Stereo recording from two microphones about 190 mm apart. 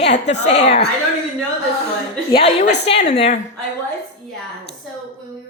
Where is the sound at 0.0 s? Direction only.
35° left (ahead or behind).